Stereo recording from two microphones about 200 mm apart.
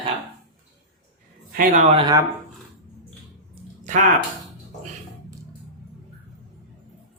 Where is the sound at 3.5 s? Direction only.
40° right (ahead or behind).